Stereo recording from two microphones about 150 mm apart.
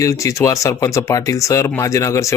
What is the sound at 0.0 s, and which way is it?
Speech, 20° left (ahead or behind).